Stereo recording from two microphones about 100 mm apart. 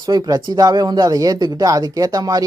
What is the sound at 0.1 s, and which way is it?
Speech, 40° right (ahead or behind).